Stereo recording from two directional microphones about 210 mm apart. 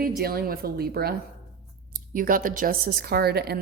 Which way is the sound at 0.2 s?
45° right (ahead or behind).